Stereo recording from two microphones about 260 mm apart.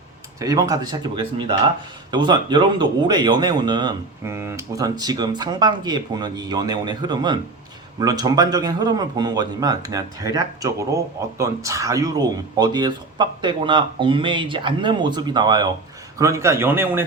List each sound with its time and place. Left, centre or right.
0.3 s a man's voice: centre